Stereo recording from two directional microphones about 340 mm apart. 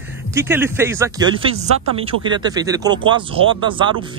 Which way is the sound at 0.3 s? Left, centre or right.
Centre.